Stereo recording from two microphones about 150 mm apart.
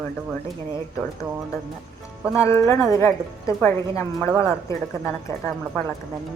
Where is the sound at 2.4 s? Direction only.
20° left (ahead or behind).